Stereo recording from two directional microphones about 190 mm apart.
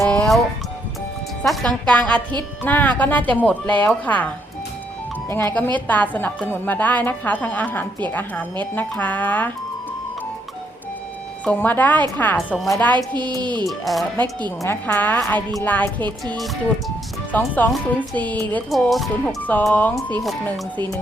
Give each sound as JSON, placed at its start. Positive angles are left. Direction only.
{"t": 0.1, "sound": "music", "side_deg": 5}
{"t": 1.4, "sound": "a woman's voice", "side_deg": 5}
{"t": 5.7, "sound": "a woman's voice", "side_deg": 10}
{"t": 11.4, "sound": "a woman's voice", "side_deg": 10}
{"t": 13.0, "sound": "speech", "side_deg": -20}
{"t": 13.7, "sound": "speech", "side_deg": 0}
{"t": 14.6, "sound": "a woman's voice", "side_deg": 10}
{"t": 17.3, "sound": "a woman's voice", "side_deg": 10}